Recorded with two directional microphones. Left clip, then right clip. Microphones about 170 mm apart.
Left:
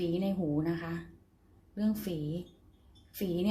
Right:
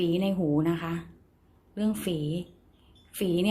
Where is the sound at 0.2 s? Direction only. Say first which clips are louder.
Right 6 dB; 15° right (ahead or behind).